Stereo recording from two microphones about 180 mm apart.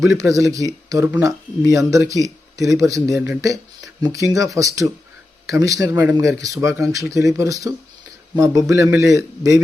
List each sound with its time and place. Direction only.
0.0 s speech: 15° right (ahead or behind)